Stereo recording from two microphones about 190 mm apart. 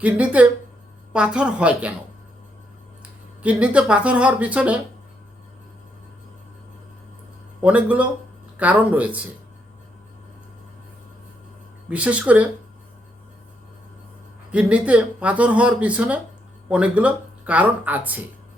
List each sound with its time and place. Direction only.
0.0 s a woman's voice: 5° right (ahead or behind)
3.0 s speech: 5° right (ahead or behind)
7.6 s speech: 5° right (ahead or behind)
11.9 s speech: 5° right (ahead or behind)
14.5 s speech: 5° right (ahead or behind)